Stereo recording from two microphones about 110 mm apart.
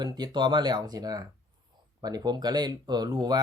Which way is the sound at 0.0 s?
40° right (ahead or behind).